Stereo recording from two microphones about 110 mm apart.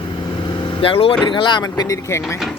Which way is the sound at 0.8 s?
55° left (ahead or behind).